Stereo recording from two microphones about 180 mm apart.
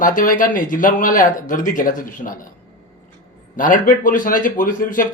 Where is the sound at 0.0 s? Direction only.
45° left (ahead or behind).